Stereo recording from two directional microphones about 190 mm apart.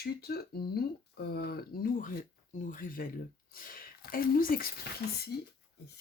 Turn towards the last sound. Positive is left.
turn(degrees=55)  # may be behind; listen again after turning